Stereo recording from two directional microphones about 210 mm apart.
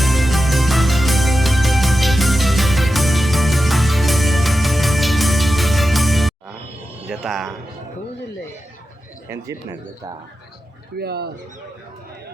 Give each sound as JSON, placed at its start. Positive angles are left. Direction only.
{"t": 0.0, "sound": "music", "side_deg": 0}
{"t": 7.1, "sound": "a sound", "side_deg": 0}
{"t": 9.3, "sound": "speech", "side_deg": -10}
{"t": 10.9, "sound": "speech", "side_deg": -50}